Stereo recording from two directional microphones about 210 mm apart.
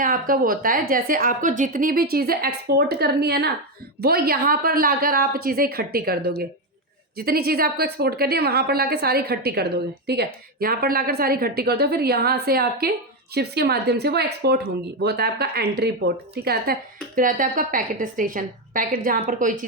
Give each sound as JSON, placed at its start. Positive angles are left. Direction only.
{"t": 0.0, "sound": "a woman's voice", "side_deg": -40}